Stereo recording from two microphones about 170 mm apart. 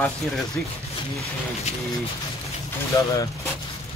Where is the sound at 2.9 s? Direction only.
25° left (ahead or behind).